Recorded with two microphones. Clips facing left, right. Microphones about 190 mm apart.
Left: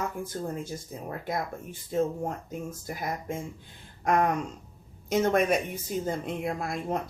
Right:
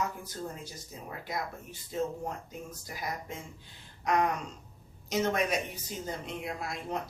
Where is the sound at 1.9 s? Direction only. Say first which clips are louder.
Left 5 dB; 50° left (ahead or behind).